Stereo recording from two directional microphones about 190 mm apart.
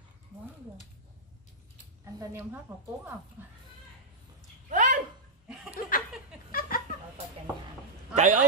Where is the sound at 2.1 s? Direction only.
15° right (ahead or behind).